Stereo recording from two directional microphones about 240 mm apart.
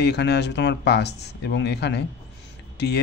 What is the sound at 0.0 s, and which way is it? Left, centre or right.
Speech, left.